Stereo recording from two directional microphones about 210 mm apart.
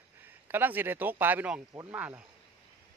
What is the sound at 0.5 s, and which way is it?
Speech, 10° right (ahead or behind).